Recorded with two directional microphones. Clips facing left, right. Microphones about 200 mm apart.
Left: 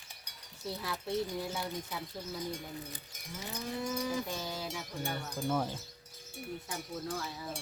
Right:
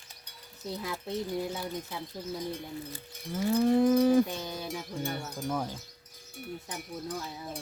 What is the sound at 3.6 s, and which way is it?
Cattle, 60° right (ahead or behind).